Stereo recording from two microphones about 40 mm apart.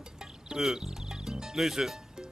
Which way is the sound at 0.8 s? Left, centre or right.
Centre.